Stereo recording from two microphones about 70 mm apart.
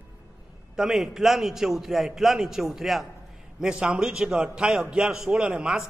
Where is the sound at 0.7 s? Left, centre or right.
Centre.